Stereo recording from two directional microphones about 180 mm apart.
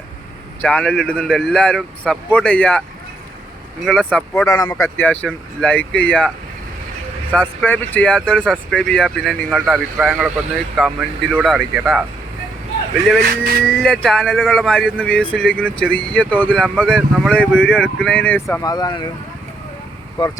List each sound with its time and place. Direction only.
0.6 s speech: 5° left (ahead or behind)
3.8 s speech: 5° left (ahead or behind)
4.4 s speech: 20° left (ahead or behind)
7.3 s speech: 10° left (ahead or behind)
13.8 s speech: centre (ahead or behind); by 19.1 s 20° left (ahead or behind)
20.2 s speech: 25° left (ahead or behind)